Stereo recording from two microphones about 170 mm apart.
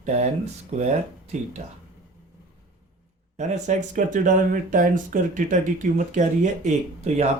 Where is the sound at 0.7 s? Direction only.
40° right (ahead or behind).